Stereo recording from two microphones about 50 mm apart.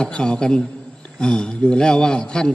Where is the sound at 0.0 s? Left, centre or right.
Centre.